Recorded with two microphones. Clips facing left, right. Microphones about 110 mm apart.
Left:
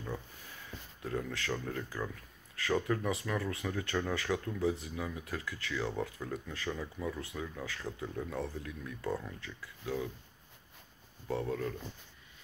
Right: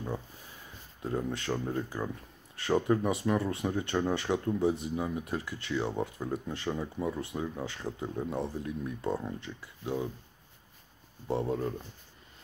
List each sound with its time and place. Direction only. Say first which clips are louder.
1.0 s speech: right 4 dB; 25° right (ahead or behind)
11.2 s speech: right 4 dB; 25° right (ahead or behind)